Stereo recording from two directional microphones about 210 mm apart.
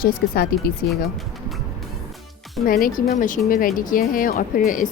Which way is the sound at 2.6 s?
45° left (ahead or behind).